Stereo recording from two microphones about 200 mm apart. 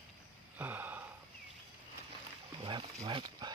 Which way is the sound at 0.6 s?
10° right (ahead or behind).